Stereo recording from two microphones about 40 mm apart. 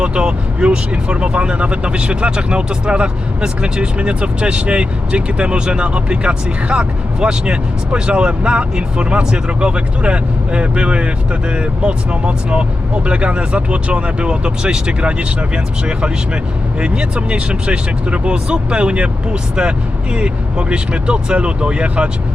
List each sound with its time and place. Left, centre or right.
0.0 s speech: right